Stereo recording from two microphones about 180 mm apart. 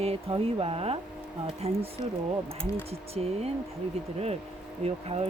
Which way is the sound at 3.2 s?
35° right (ahead or behind).